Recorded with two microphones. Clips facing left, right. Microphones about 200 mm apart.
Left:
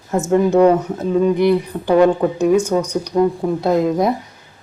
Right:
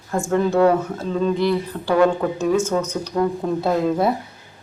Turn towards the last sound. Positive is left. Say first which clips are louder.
# left 3 dB
turn(degrees=15)  # may be behind; listen again after turning